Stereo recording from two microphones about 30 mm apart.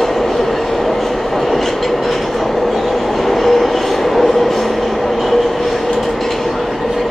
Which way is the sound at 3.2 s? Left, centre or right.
Centre.